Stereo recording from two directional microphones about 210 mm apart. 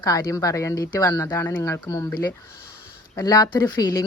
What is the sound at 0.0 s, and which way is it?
Speech, 15° left (ahead or behind).